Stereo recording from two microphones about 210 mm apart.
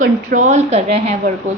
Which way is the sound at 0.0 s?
40° right (ahead or behind).